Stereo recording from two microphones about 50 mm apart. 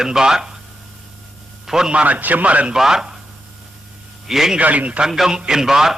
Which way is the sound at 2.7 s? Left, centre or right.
Centre.